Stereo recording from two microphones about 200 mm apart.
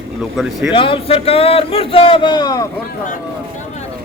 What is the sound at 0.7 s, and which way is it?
Speech, 25° left (ahead or behind).